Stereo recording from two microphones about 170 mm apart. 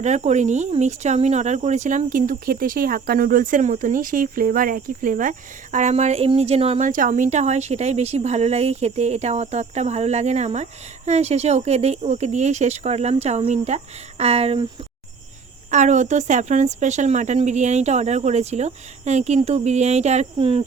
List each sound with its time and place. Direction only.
0.0 s speech: 45° right (ahead or behind)
15.7 s speech: 45° right (ahead or behind)